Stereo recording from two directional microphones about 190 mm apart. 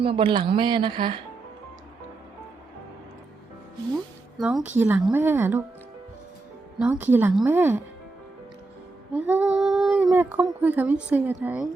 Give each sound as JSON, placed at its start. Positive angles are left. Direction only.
{"t": 0.0, "sound": "a woman's voice", "side_deg": -25}
{"t": 4.4, "sound": "speech", "side_deg": -5}
{"t": 6.7, "sound": "speech", "side_deg": -5}
{"t": 9.1, "sound": "speech", "side_deg": -10}